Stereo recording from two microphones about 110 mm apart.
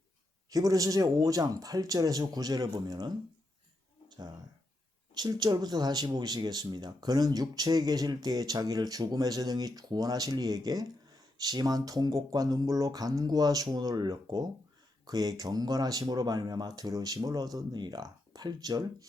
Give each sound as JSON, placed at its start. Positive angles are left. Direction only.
{"t": 0.5, "sound": "speech", "side_deg": -30}
{"t": 5.1, "sound": "speech", "side_deg": -40}